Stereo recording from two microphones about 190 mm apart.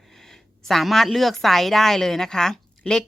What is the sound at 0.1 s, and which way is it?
Speech, centre (ahead or behind).